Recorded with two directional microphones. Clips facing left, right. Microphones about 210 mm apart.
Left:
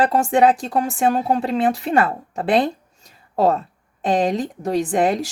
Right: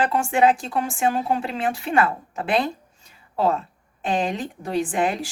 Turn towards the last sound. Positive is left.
turn(degrees=40)  # may be behind; listen again after turning